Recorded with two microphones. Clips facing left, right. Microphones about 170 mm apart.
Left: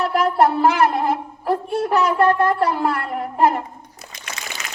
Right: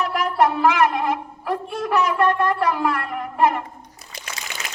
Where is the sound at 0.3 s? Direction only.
35° left (ahead or behind).